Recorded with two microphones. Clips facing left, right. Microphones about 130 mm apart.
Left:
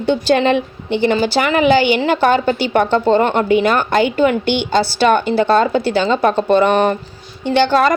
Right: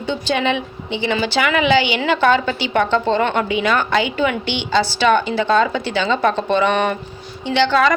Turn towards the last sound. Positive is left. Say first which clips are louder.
# left 3 dB
turn(degrees=45)  # may be behind; listen again after turning